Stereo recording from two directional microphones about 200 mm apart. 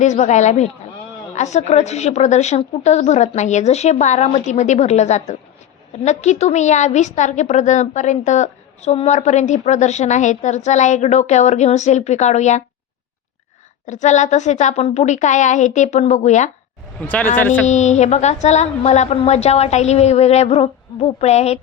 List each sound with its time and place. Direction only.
0.0 s a woman's voice: 35° left (ahead or behind)
13.8 s a woman's voice: 35° left (ahead or behind)
17.3 s speech: 10° left (ahead or behind)
17.7 s a woman's voice: 35° left (ahead or behind)